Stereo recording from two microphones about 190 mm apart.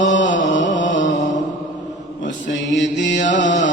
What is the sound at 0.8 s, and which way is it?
Mantra, 80° left.